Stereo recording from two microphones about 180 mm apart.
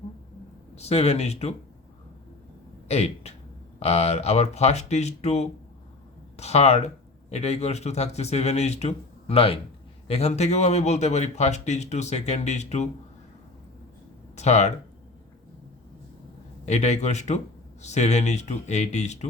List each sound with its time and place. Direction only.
0.8 s speech: 35° left (ahead or behind)
2.9 s speech: 35° left (ahead or behind)
14.3 s speech: 40° left (ahead or behind)
16.6 s speech: 40° left (ahead or behind)